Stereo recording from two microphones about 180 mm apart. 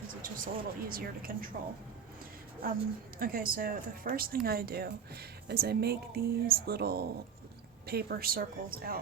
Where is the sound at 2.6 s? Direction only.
55° right (ahead or behind).